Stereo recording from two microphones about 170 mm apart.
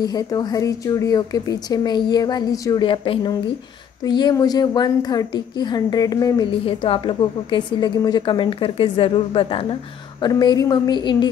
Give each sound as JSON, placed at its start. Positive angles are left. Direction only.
{"t": 0.0, "sound": "a woman's voice", "side_deg": 25}